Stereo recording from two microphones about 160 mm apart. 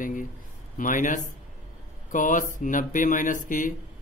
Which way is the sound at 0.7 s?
55° left (ahead or behind).